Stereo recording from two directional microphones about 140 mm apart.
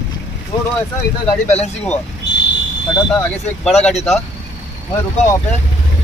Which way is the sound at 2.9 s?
25° left (ahead or behind).